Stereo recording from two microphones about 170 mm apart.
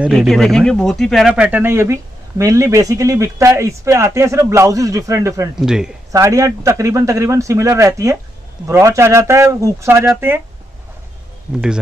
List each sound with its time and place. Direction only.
0.0 s speech: 5° right (ahead or behind)
5.6 s speech: 5° right (ahead or behind)
6.1 s speech: 20° right (ahead or behind)